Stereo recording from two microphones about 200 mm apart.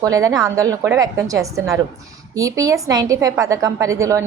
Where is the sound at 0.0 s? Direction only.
15° right (ahead or behind).